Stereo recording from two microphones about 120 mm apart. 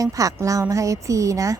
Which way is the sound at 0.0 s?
30° right (ahead or behind).